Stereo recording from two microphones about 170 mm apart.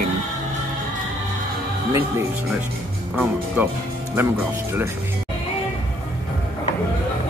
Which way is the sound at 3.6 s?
10° right (ahead or behind).